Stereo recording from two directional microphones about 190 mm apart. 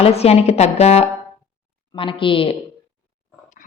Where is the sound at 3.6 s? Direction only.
45° left (ahead or behind).